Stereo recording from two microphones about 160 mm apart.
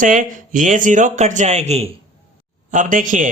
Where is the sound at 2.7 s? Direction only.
55° right (ahead or behind).